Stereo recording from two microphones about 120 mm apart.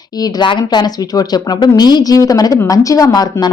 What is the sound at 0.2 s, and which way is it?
Speech, 35° left (ahead or behind).